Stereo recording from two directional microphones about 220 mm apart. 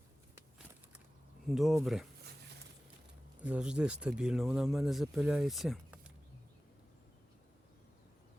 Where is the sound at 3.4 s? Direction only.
5° right (ahead or behind).